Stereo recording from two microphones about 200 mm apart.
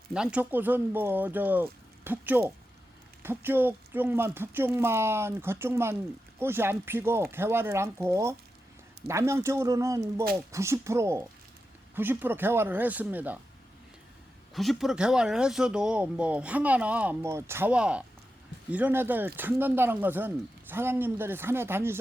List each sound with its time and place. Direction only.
0.1 s speech: 5° right (ahead or behind)
14.5 s speech: centre (ahead or behind)